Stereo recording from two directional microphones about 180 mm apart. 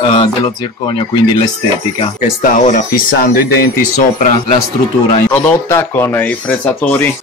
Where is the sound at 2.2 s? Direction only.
45° left (ahead or behind).